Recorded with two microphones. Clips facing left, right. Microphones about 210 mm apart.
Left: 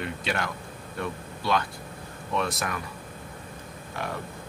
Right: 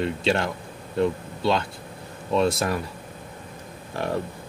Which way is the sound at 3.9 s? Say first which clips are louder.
Right 7 dB; 35° right (ahead or behind).